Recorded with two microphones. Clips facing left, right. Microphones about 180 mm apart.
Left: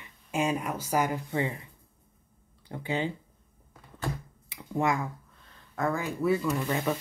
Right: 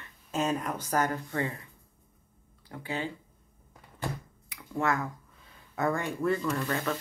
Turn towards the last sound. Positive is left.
turn(degrees=15)  # may be behind; listen again after turning